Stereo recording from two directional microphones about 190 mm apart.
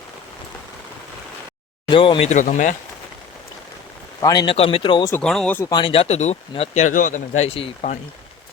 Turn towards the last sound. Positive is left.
turn(degrees=35)  # may be behind; listen again after turning